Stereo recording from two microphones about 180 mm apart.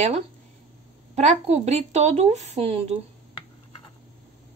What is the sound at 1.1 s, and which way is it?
A woman's voice, 40° right (ahead or behind).